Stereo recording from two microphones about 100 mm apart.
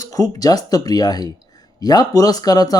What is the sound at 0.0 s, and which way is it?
Speech, 35° left (ahead or behind).